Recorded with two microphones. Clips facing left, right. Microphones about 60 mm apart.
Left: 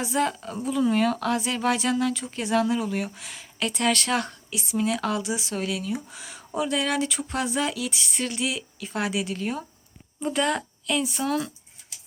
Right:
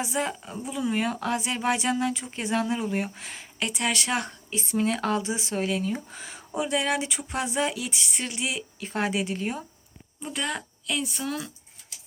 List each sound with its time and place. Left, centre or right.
0.0 s a woman's voice: centre; by 3.4 s right
3.6 s speech: centre
4.6 s speech: right
6.6 s speech: right
10.2 s speech: centre